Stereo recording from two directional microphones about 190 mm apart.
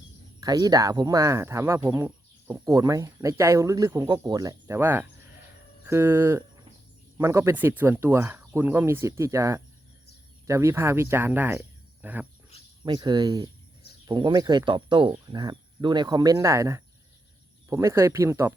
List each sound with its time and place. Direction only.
0.3 s speech: 20° right (ahead or behind)
12.8 s speech: 20° right (ahead or behind)